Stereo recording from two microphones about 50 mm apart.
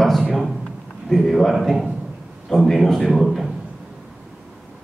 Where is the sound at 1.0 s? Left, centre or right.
Centre.